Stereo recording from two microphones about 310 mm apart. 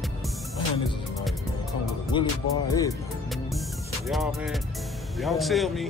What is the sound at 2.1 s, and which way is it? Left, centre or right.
Speech, centre.